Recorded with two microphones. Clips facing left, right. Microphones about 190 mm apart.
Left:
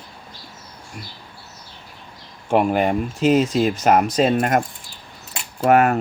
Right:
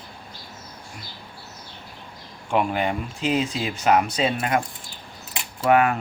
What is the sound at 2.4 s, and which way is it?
Speech, 45° left (ahead or behind).